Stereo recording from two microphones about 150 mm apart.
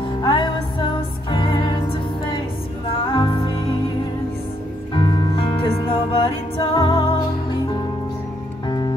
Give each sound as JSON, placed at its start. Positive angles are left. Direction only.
{"t": 0.2, "sound": "music", "side_deg": 30}
{"t": 4.9, "sound": "music", "side_deg": 30}
{"t": 8.6, "sound": "music", "side_deg": 30}